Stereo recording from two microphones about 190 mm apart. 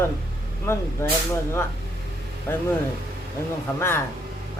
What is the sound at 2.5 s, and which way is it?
Speech, 10° left (ahead or behind).